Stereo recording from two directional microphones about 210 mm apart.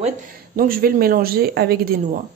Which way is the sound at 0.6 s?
45° right (ahead or behind).